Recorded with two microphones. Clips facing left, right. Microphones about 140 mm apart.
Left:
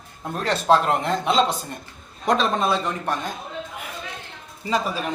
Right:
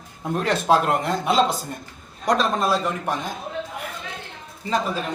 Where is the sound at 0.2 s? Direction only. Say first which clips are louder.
Right 2 dB; 10° right (ahead or behind).